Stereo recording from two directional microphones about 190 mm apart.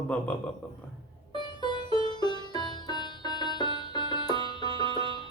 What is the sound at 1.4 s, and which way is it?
Music, 25° left (ahead or behind).